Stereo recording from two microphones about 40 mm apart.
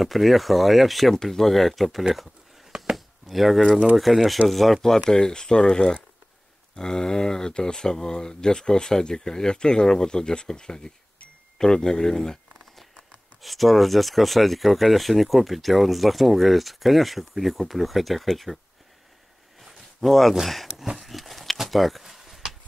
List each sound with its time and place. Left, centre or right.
0.0 s speech: centre
1.1 s speech: centre
2.1 s a sound: centre
3.3 s speech: centre
4.8 s speech: centre
13.4 s speech: centre
20.0 s speech: centre
21.0 s a sound: centre